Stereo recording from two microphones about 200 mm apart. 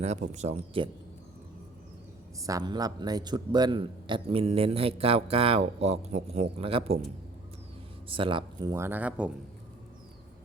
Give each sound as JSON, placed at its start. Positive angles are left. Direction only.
{"t": 0.0, "sound": "speech", "side_deg": -35}
{"t": 2.5, "sound": "a man's voice", "side_deg": -20}
{"t": 8.1, "sound": "speech", "side_deg": -25}